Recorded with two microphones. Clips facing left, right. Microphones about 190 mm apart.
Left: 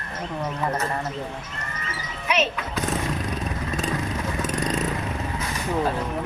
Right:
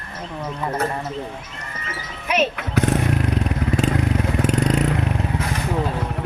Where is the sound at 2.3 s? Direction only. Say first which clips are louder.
Right 3 dB; 60° right (ahead or behind).